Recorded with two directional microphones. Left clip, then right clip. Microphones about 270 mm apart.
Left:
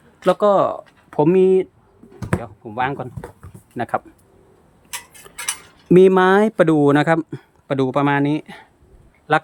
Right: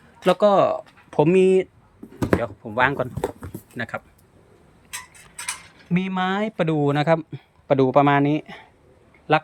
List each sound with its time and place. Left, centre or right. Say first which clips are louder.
0.3 s speech: left 1 dB; centre
5.9 s speech: left 13 dB; left